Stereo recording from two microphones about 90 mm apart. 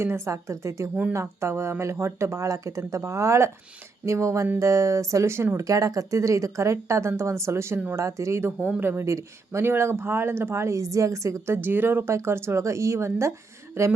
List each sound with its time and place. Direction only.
0.0 s speech: 30° right (ahead or behind)